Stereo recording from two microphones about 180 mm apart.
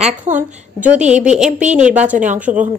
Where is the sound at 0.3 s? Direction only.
40° right (ahead or behind).